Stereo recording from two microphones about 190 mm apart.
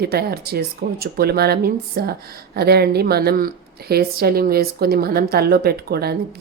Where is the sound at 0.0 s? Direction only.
55° right (ahead or behind).